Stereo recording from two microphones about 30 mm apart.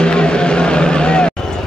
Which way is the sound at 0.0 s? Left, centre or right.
Left.